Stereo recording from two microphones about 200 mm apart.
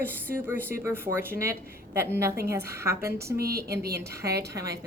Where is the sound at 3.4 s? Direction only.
50° right (ahead or behind).